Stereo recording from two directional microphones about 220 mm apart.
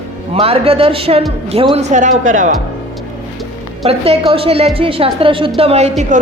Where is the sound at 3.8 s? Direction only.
25° right (ahead or behind).